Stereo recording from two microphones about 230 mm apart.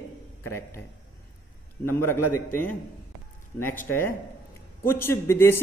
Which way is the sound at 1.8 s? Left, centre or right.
Centre.